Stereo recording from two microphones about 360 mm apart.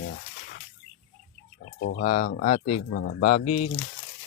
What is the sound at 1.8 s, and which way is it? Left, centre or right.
Speech, left.